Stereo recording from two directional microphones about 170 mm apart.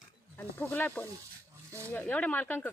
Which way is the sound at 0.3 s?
10° left (ahead or behind).